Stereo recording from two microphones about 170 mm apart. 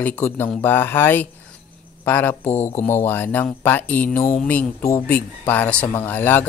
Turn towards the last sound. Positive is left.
turn(degrees=10)  # may be behind; listen again after turning